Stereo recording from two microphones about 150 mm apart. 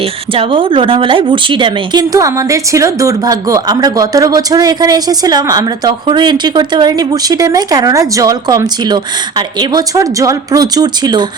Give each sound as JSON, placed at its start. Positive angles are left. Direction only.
{"t": 0.3, "sound": "a woman's voice", "side_deg": -35}